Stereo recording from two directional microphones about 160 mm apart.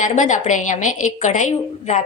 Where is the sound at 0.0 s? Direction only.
50° left (ahead or behind).